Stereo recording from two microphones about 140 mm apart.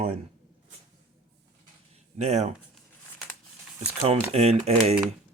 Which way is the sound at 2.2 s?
55° right (ahead or behind).